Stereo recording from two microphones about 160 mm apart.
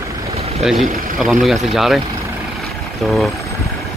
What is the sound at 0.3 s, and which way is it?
Boat, 40° right (ahead or behind).